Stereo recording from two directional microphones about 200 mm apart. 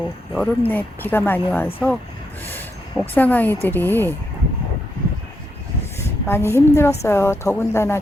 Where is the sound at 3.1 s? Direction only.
10° left (ahead or behind).